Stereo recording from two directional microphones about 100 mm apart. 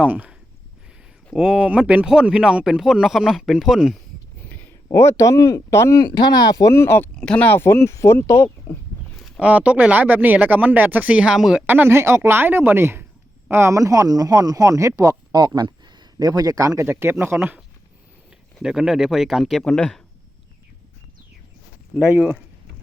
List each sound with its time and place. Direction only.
0.0 s speech: 15° right (ahead or behind)
4.4 s speech: 20° left (ahead or behind)
6.1 s speech: 40° left (ahead or behind)
6.7 s speech: 25° left (ahead or behind)
7.2 s speech: 10° left (ahead or behind); by 8.8 s 30° left (ahead or behind)
9.4 s speech: 15° right (ahead or behind)
11.6 s speech: 20° right (ahead or behind)
18.6 s speech: 5° right (ahead or behind)
21.9 s speech: 10° right (ahead or behind)